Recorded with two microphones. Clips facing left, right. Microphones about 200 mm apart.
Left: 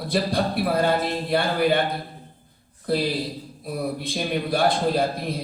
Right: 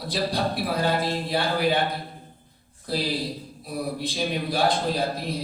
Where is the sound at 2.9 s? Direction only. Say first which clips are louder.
Left 3 dB; 55° left (ahead or behind).